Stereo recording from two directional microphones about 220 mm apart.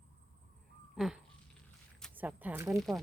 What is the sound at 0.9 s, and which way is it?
Crow, centre (ahead or behind).